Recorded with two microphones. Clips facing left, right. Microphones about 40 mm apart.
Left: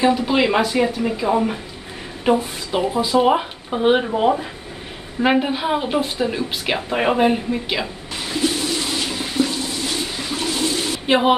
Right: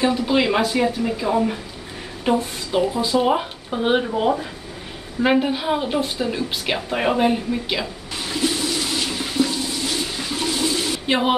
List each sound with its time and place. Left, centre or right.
0.0 s speech: centre
8.2 s water: centre
11.1 s speech: centre